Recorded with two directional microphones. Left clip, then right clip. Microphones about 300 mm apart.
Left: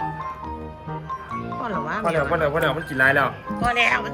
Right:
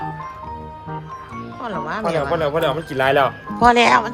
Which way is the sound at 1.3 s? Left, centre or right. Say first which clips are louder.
Right 1 dB; centre.